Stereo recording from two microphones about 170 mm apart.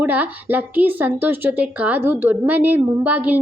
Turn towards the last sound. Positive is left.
turn(degrees=-10)  # may be behind; listen again after turning